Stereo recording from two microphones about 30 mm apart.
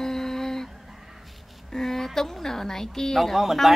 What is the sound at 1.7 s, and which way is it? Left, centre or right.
A woman's voice, centre.